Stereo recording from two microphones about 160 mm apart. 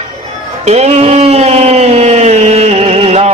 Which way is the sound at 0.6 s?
40° right (ahead or behind).